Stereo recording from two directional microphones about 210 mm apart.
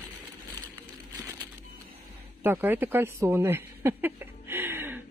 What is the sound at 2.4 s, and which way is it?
Speech, 10° right (ahead or behind).